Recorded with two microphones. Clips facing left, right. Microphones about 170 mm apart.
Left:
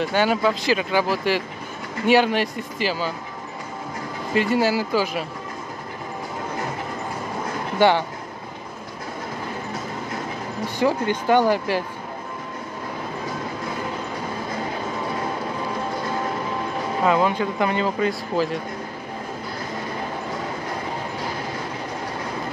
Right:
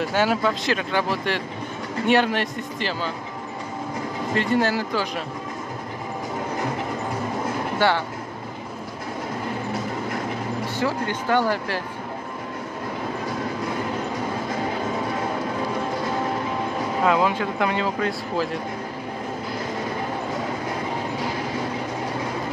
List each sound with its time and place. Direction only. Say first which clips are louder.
0.0 s speech: left 1 dB; centre (ahead or behind)
4.4 s speech: left 2 dB; 5° left (ahead or behind)
7.8 s speech: left 4 dB; 15° left (ahead or behind)
10.8 s speech: left 6 dB; 15° left (ahead or behind)
17.0 s speech: left 1 dB; centre (ahead or behind)